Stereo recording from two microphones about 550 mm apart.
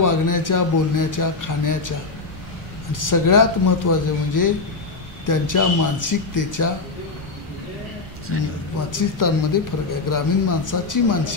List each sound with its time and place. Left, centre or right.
0.0 s speech: left
8.9 s speech: left